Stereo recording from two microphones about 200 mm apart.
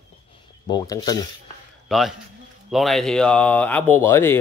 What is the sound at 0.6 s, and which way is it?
Speech, 20° left (ahead or behind).